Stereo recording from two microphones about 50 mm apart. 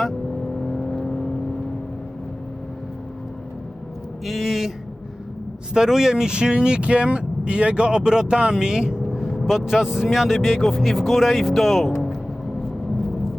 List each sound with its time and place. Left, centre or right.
0.6 s vehicle: centre
4.3 s a sound: centre
5.7 s speech: centre